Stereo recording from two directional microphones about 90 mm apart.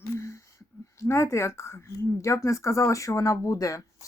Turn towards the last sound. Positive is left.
turn(degrees=35)  # may be behind; listen again after turning